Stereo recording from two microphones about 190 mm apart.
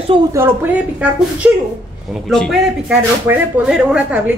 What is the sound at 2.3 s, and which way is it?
A woman's voice, centre (ahead or behind).